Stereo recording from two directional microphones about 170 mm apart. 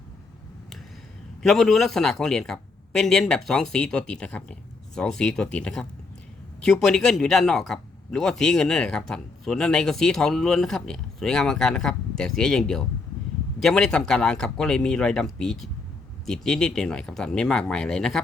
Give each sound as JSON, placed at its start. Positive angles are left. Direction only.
{"t": 1.4, "sound": "speech", "side_deg": 0}
{"t": 6.8, "sound": "speech", "side_deg": 0}